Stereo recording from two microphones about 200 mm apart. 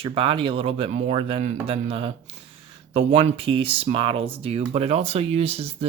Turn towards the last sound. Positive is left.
turn(degrees=-30)  # may be behind; listen again after turning